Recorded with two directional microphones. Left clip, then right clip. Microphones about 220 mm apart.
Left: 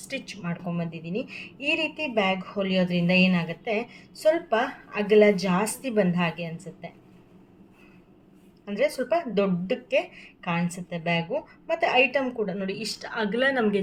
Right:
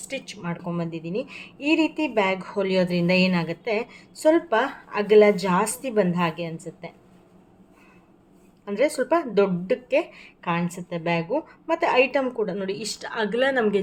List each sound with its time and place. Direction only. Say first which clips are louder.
0.1 s a woman's voice: right 2 dB; 15° right (ahead or behind)
8.6 s a woman's voice: right 3 dB; 20° right (ahead or behind)